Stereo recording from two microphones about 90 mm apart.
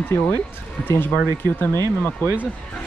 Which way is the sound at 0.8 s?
20° left (ahead or behind).